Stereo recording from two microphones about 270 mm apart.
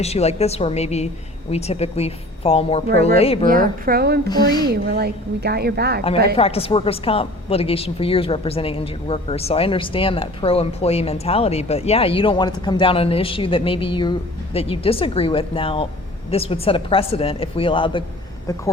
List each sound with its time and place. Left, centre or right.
0.0 s a woman's voice: left
3.4 s a woman's voice: right
4.3 s speech: centre
4.9 s a woman's voice: right
6.3 s a woman's voice: left